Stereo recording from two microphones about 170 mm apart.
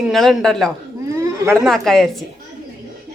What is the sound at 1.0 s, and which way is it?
Chatter, 20° right (ahead or behind).